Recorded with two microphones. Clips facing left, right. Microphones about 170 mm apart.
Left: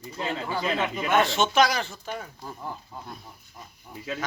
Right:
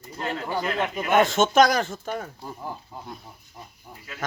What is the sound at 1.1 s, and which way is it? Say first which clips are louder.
Speech: right 4 dB; 45° right (ahead or behind).